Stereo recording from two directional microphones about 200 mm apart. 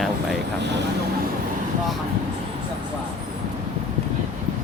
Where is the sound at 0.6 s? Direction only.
60° right (ahead or behind).